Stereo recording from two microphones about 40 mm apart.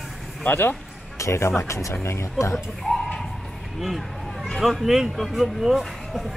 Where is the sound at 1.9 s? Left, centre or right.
Left.